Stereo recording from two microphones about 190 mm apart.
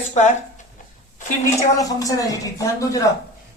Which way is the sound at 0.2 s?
35° left (ahead or behind).